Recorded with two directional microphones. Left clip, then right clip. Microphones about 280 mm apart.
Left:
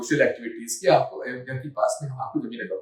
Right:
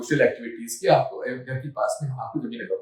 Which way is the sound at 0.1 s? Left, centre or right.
Centre.